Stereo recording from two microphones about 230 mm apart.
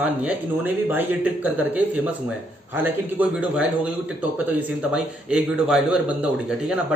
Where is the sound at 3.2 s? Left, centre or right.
Centre.